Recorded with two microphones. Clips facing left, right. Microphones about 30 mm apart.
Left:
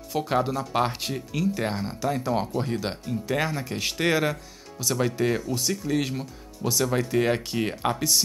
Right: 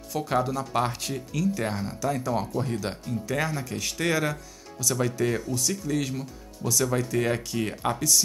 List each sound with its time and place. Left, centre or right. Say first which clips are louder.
0.1 s speech: left 1 dB; left